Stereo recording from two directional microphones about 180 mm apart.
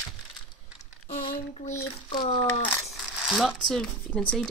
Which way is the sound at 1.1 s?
40° left (ahead or behind).